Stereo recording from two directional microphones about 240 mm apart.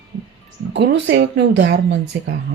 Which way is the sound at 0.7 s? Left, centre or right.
Right.